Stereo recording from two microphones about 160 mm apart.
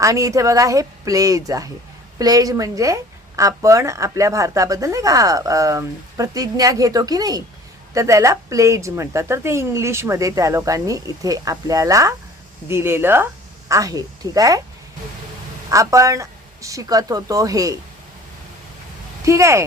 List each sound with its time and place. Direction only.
0.0 s speech: 20° right (ahead or behind)
15.7 s speech: 20° right (ahead or behind)
19.2 s speech: 20° right (ahead or behind)